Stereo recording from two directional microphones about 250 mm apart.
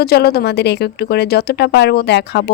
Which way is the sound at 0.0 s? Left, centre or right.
Left.